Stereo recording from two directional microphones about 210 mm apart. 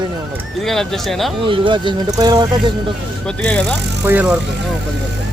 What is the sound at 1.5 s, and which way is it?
Speech, 25° right (ahead or behind).